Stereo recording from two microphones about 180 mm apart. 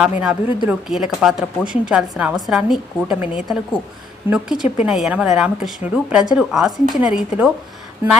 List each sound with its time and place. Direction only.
0.0 s a woman's voice: 5° right (ahead or behind)